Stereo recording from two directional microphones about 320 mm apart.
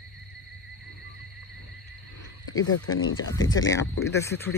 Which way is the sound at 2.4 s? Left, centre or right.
Left.